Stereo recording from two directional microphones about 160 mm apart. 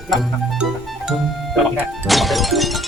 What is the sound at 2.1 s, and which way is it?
Music, centre (ahead or behind).